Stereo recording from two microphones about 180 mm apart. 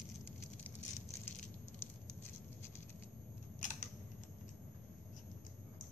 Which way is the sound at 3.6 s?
45° left (ahead or behind).